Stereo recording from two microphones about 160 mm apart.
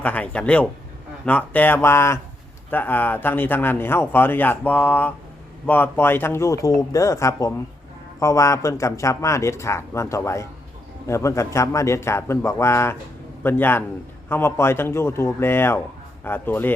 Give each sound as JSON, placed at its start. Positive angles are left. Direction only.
{"t": 0.0, "sound": "speech", "side_deg": 10}